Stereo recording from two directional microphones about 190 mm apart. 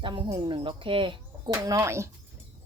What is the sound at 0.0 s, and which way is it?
Speech, 25° right (ahead or behind).